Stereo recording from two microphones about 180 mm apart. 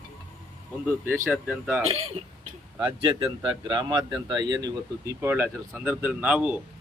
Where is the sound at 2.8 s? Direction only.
30° right (ahead or behind); by 6.5 s 5° right (ahead or behind).